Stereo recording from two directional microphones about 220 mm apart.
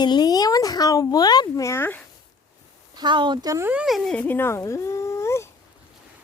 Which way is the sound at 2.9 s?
20° right (ahead or behind).